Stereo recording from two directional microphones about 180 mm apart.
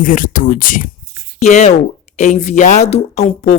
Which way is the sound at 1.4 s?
40° left (ahead or behind).